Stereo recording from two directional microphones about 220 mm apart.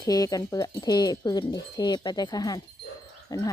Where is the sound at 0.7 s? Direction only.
20° left (ahead or behind).